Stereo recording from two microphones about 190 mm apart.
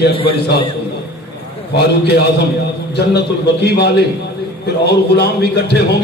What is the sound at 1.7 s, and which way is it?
A man's voice, 60° left (ahead or behind).